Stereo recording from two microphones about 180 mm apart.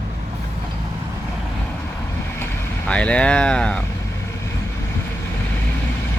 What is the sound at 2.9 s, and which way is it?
Speech, 5° left (ahead or behind).